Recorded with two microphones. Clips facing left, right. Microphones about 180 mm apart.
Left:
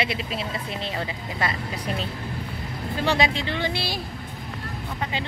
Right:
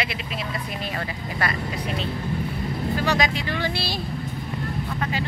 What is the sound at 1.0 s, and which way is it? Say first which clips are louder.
Speech: right 1 dB; 20° left (ahead or behind).